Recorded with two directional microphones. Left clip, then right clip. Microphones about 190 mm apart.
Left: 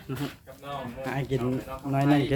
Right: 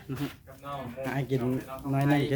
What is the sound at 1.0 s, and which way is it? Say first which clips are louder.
Speech: left 1 dB; 15° right (ahead or behind).